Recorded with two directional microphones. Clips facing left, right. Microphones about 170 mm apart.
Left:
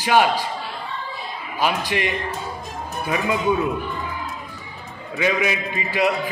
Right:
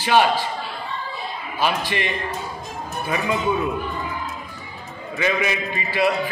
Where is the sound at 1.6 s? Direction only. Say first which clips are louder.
Left 1 dB; 15° left (ahead or behind).